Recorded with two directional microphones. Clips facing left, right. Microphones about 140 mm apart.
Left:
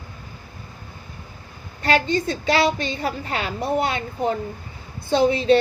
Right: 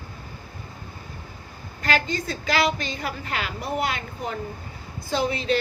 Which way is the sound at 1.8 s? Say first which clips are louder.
Left 5 dB; 30° left (ahead or behind).